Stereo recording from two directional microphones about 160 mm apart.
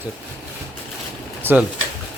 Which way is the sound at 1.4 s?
10° right (ahead or behind).